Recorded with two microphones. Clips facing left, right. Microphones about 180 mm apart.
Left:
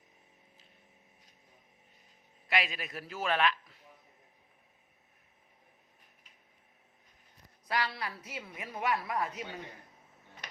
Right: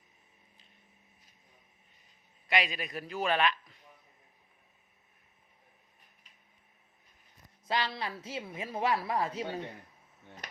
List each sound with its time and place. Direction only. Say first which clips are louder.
2.5 s a man's voice: right 2 dB; centre (ahead or behind)
7.7 s a woman's voice: right 1 dB; 25° right (ahead or behind)